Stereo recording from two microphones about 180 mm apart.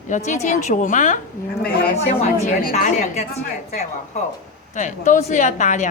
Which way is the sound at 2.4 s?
45° left (ahead or behind).